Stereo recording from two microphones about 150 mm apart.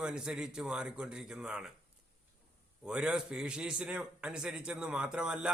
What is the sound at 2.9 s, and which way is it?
A man's voice, 5° right (ahead or behind).